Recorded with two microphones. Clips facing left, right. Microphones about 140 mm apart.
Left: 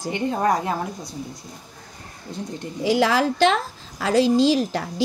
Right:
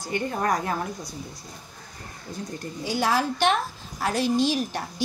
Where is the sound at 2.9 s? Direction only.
90° left.